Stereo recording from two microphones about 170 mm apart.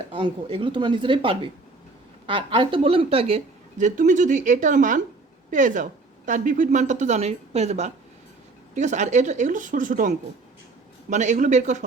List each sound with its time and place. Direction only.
0.1 s a woman's voice: 30° right (ahead or behind)